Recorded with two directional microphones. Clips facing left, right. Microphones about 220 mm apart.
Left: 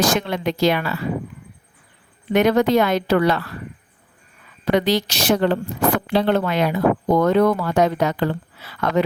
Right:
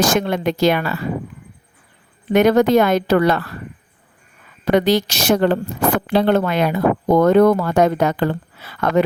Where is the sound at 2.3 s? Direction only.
45° right (ahead or behind).